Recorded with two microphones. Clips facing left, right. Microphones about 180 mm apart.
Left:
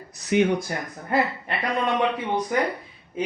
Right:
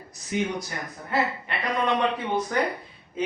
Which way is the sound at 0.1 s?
70° left (ahead or behind).